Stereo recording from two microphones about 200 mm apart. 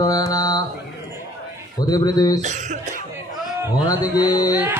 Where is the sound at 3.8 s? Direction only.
20° left (ahead or behind).